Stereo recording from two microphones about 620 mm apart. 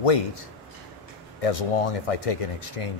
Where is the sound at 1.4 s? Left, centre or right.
Left.